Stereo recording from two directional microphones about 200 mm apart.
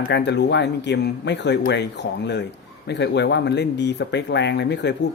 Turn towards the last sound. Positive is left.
turn(degrees=60)  # may be behind; listen again after turning